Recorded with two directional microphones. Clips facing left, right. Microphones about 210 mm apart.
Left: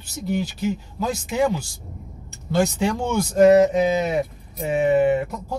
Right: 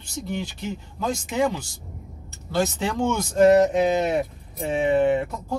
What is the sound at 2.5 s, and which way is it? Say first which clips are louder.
Speech: left 3 dB; 10° left (ahead or behind).